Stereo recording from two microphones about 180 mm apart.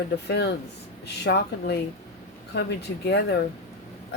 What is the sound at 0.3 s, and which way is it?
Speech, 65° left (ahead or behind).